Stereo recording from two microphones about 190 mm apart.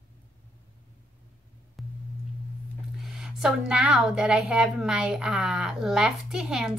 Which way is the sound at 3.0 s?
5° right (ahead or behind).